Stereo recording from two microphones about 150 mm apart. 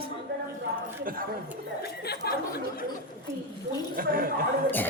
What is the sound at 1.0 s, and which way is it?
Speech, 75° right (ahead or behind).